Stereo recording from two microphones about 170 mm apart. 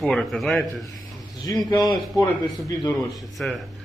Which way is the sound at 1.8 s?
20° left (ahead or behind).